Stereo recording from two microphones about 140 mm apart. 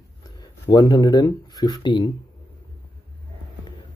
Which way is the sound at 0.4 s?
30° left (ahead or behind).